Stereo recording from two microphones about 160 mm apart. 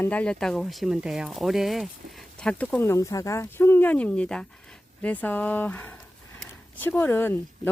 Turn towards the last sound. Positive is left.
turn(degrees=15)  # may be behind; listen again after turning